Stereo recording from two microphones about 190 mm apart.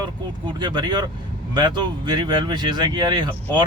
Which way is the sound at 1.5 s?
25° right (ahead or behind).